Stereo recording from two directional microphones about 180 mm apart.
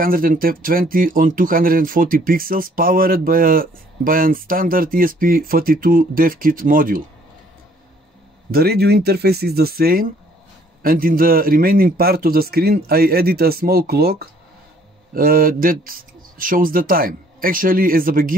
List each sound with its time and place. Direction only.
0.0 s speech: 50° right (ahead or behind)
8.5 s a man's voice: 60° right (ahead or behind)